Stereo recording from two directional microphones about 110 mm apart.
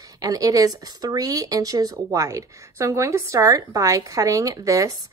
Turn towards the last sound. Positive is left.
turn(degrees=-30)  # may be behind; listen again after turning